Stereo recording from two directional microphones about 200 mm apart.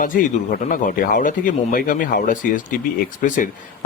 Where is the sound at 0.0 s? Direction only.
45° left (ahead or behind).